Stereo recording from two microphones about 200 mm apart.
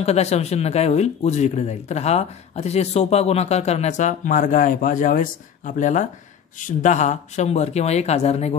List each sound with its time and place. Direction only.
0.0 s speech: 30° left (ahead or behind)